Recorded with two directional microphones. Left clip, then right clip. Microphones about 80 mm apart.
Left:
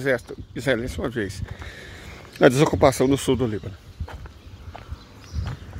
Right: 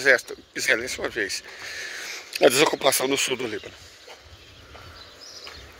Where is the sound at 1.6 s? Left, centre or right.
Left.